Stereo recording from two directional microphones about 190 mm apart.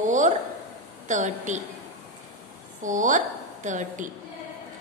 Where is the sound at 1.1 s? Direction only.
40° right (ahead or behind).